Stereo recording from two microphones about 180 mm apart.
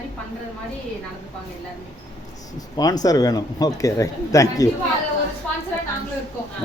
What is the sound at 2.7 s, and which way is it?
A man's voice, 20° left (ahead or behind).